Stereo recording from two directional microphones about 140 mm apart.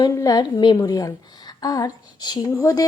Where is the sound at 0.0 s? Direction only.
25° left (ahead or behind).